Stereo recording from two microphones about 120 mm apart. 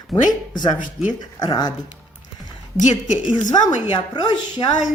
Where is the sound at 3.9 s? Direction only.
35° left (ahead or behind).